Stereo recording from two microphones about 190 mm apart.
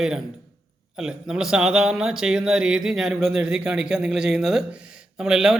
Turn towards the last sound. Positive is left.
turn(degrees=-5)  # may be behind; listen again after turning